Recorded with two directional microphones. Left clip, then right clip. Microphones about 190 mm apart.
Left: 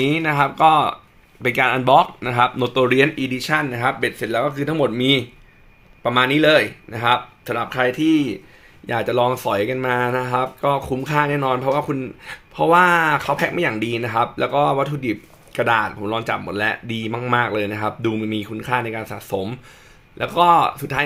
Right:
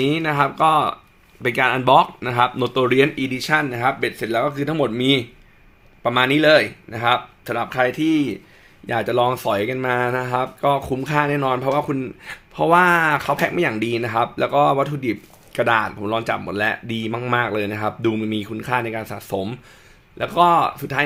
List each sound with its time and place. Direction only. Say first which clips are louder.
0.0 s speech: left 1 dB; centre (ahead or behind)